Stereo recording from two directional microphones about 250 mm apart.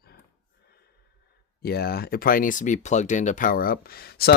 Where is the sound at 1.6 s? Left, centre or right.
Left.